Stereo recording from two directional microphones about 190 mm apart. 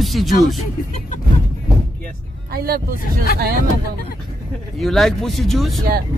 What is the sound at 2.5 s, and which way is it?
Speech, 55° right (ahead or behind).